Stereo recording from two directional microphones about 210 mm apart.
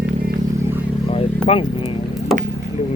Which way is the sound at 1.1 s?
25° left (ahead or behind).